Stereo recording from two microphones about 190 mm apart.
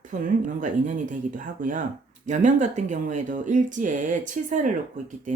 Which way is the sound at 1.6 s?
45° right (ahead or behind).